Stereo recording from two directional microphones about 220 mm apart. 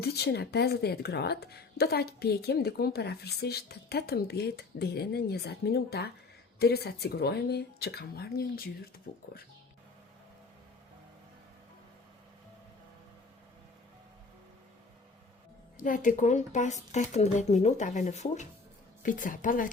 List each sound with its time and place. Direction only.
0.0 s speech: 45° left (ahead or behind)
15.8 s speech: 35° left (ahead or behind)